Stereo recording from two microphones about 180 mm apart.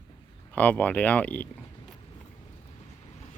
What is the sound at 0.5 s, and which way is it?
Speech, 10° left (ahead or behind).